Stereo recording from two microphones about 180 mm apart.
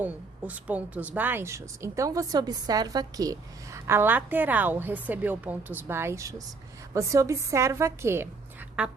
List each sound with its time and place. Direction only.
0.0 s a woman's voice: 10° right (ahead or behind)